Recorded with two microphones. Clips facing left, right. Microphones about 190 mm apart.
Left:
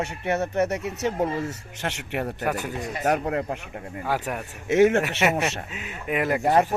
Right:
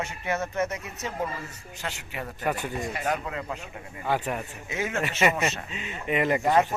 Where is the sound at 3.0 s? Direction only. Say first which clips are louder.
Left 10 dB; 50° left (ahead or behind).